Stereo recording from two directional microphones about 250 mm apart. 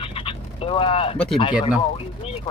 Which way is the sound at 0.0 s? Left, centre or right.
Left.